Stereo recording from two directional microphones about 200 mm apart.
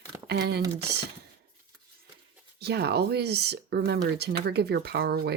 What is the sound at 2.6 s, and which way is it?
Speech, 55° right (ahead or behind).